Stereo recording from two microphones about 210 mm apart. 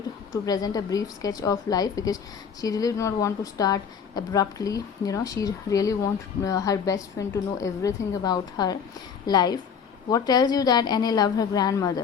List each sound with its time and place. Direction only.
0.4 s a woman's voice: 20° left (ahead or behind)